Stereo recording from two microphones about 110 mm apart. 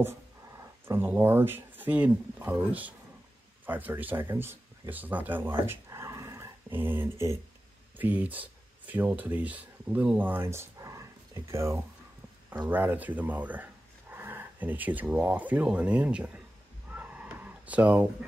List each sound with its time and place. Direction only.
0.8 s speech: 20° right (ahead or behind)
12.6 s speech: 15° right (ahead or behind)
16.9 s a sound: 15° right (ahead or behind)